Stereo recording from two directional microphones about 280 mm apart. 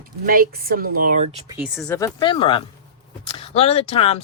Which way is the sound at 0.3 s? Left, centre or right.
Right.